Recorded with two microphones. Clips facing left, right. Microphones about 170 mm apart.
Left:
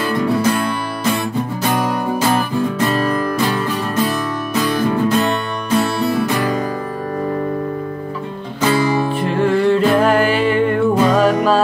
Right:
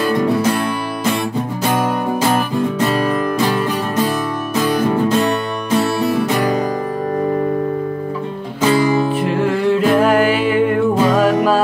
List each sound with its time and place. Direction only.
2.9 s music: 10° right (ahead or behind)
5.9 s music: 15° right (ahead or behind)
8.5 s music: 15° right (ahead or behind)
9.2 s music: 5° right (ahead or behind)